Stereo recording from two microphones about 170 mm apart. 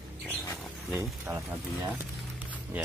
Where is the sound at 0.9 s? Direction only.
15° right (ahead or behind).